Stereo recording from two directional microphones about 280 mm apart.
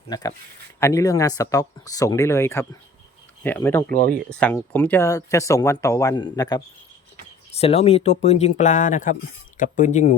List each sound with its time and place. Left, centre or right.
0.1 s speech: centre